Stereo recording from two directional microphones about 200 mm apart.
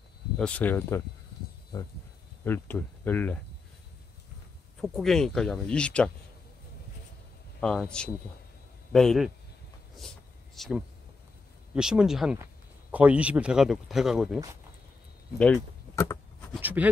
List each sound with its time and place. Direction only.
0.4 s speech: 5° left (ahead or behind)
4.8 s speech: centre (ahead or behind)
7.6 s speech: 5° left (ahead or behind)
9.9 s vehicle: centre (ahead or behind)
11.7 s speech: 5° right (ahead or behind)
15.3 s a sound: 5° left (ahead or behind)
16.6 s speech: 10° right (ahead or behind)